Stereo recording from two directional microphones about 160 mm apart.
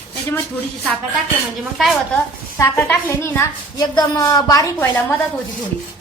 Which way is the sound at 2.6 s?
15° left (ahead or behind).